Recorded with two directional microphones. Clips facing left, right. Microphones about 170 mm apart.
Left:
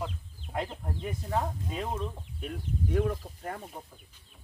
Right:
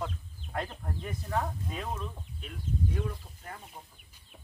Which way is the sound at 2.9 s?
55° left (ahead or behind).